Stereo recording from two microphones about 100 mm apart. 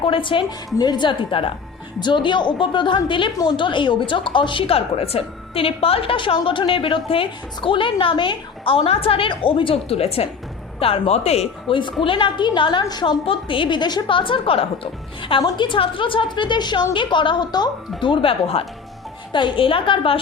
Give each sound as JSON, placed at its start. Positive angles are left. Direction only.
{"t": 0.0, "sound": "a woman's voice", "side_deg": 60}
{"t": 10.8, "sound": "speech", "side_deg": 70}
{"t": 12.0, "sound": "a woman's voice", "side_deg": 60}
{"t": 13.2, "sound": "a woman's voice", "side_deg": 65}
{"t": 19.3, "sound": "a woman's voice", "side_deg": 55}